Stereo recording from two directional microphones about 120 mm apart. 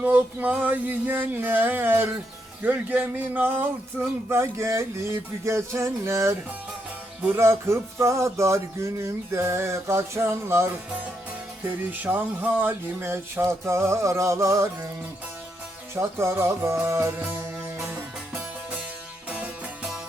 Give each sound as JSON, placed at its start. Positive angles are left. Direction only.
{"t": 0.0, "sound": "a sound", "side_deg": -15}
{"t": 2.6, "sound": "a man's voice", "side_deg": -15}
{"t": 16.0, "sound": "a man's voice", "side_deg": -20}
{"t": 19.3, "sound": "music", "side_deg": -10}